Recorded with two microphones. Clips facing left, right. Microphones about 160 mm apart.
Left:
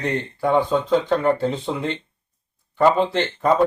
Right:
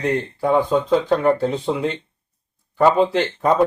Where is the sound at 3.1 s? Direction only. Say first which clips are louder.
Right 2 dB; 5° right (ahead or behind).